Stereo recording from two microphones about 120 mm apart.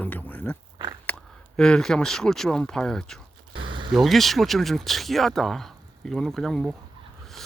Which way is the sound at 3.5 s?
45° right (ahead or behind).